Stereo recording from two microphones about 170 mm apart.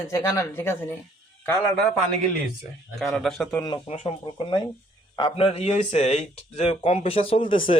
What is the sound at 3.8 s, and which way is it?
Speech, 35° left (ahead or behind).